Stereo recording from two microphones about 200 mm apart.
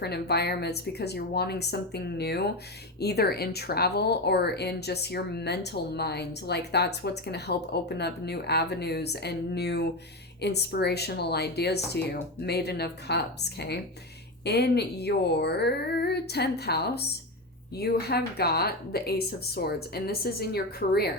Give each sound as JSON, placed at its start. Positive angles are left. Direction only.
{"t": 0.0, "sound": "speech", "side_deg": 55}